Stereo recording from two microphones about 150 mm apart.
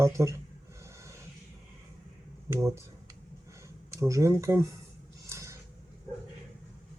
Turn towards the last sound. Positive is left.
turn(degrees=-20)  # may be behind; listen again after turning